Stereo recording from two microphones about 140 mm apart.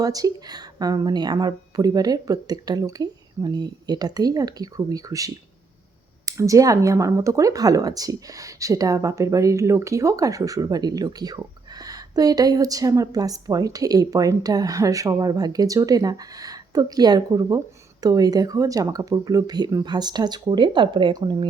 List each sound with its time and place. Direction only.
0.0 s speech: 25° right (ahead or behind)